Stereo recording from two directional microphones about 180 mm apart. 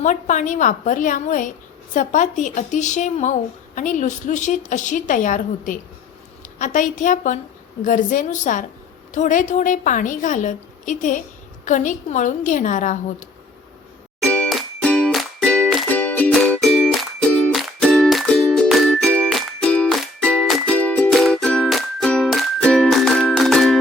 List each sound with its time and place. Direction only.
0.0 s a woman's voice: 45° left (ahead or behind)
14.2 s music: 5° left (ahead or behind)